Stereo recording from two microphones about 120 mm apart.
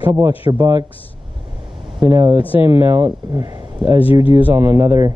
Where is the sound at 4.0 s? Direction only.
50° left (ahead or behind).